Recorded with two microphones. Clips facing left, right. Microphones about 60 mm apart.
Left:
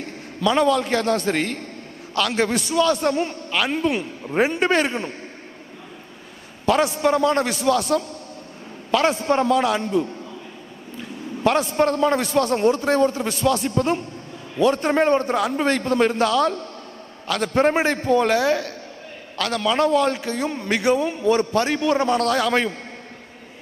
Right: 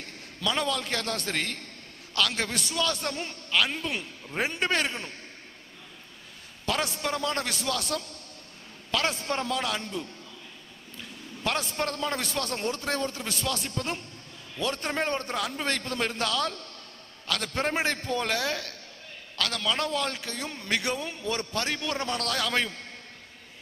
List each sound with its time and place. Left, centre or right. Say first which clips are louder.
0.0 s a man's voice: left 10 dB; centre
6.6 s a man's voice: left 11 dB; centre